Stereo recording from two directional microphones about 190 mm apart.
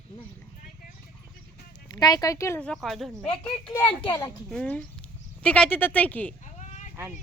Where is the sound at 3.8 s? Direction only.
25° left (ahead or behind).